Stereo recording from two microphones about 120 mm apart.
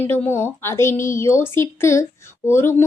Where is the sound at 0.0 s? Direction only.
20° left (ahead or behind).